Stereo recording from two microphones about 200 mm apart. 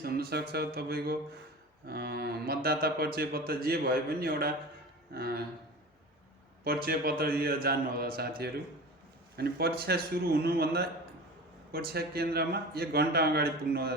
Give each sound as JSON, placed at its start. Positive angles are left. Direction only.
{"t": 0.0, "sound": "a man's voice", "side_deg": -50}
{"t": 6.7, "sound": "a man's voice", "side_deg": -50}